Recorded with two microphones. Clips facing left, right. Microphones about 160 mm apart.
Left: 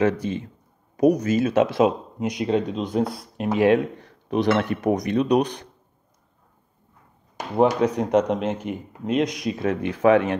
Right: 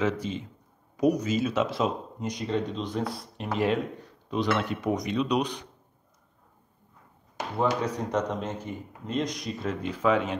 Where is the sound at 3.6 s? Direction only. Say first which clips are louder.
Left 8 dB; 70° left (ahead or behind).